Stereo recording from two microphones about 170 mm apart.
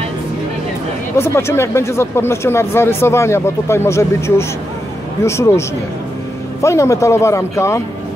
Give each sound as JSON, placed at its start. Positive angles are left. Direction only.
{"t": 1.1, "sound": "speech", "side_deg": 15}
{"t": 6.6, "sound": "speech", "side_deg": 15}